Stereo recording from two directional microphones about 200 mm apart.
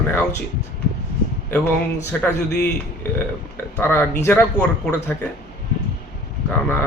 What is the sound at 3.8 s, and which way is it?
Speech, 10° left (ahead or behind).